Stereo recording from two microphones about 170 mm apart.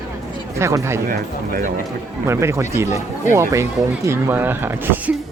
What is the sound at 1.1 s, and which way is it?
Speech, 55° right (ahead or behind).